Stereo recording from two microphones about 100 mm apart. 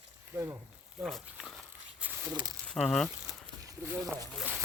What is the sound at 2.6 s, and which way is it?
Speech, 5° left (ahead or behind).